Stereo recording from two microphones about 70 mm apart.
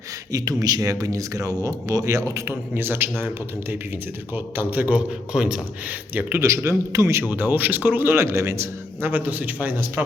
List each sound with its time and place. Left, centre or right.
0.3 s speech: right
1.0 s speech: right
2.7 s a man's voice: right; by 6.0 s centre
6.4 s speech: right
7.3 s a man's voice: right
9.0 s a man's voice: right